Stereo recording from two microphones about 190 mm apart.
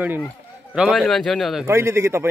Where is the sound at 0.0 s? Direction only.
10° right (ahead or behind).